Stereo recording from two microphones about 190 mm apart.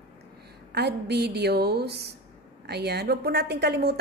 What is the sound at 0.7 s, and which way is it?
A woman's voice, 60° right (ahead or behind).